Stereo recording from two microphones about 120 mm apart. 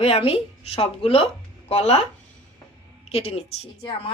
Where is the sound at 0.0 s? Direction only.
55° left (ahead or behind).